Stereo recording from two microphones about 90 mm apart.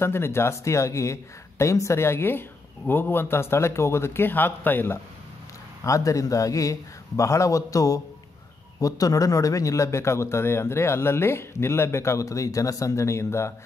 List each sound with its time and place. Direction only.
0.0 s a man's voice: 30° left (ahead or behind)
5.9 s a man's voice: 35° left (ahead or behind)